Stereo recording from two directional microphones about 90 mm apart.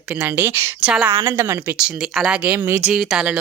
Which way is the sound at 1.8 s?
5° right (ahead or behind).